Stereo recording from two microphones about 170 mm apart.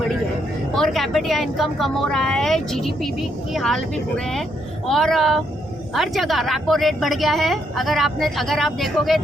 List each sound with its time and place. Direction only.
0.8 s speech: centre (ahead or behind)